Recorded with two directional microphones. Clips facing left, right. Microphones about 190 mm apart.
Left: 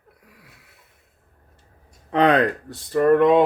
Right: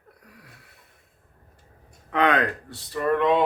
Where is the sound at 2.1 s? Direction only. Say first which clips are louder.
Left 5 dB; 35° left (ahead or behind).